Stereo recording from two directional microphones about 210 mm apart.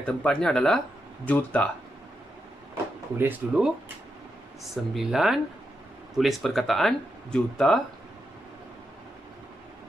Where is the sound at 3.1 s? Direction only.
5° right (ahead or behind).